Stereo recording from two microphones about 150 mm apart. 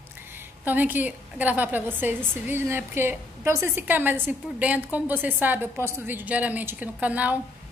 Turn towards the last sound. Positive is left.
turn(degrees=-10)  # may be behind; listen again after turning